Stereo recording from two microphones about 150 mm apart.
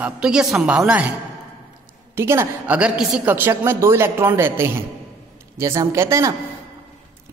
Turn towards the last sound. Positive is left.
turn(degrees=-20)  # may be behind; listen again after turning